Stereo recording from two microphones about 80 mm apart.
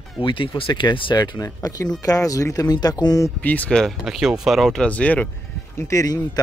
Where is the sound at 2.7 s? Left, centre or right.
Left.